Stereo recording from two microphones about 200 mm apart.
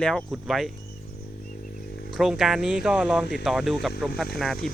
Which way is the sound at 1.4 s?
45° left (ahead or behind).